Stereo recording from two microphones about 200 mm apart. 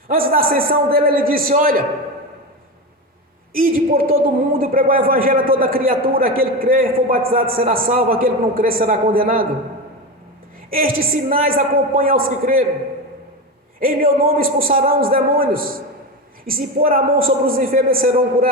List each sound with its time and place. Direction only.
0.1 s a man's voice: 45° right (ahead or behind)
3.5 s a man's voice: 45° right (ahead or behind)
10.7 s a man's voice: 45° right (ahead or behind)
13.7 s a man's voice: 45° right (ahead or behind)